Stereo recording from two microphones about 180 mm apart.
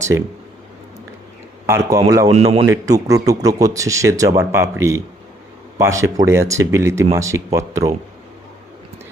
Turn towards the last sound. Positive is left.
turn(degrees=-20)  # may be behind; listen again after turning